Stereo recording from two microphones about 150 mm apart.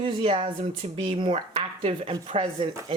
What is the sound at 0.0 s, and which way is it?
Speech, 35° right (ahead or behind).